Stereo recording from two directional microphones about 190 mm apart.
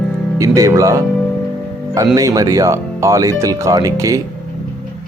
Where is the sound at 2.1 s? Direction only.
20° right (ahead or behind).